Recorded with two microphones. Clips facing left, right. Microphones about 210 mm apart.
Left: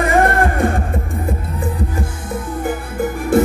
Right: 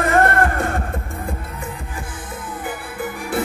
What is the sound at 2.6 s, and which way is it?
Music, 45° left (ahead or behind).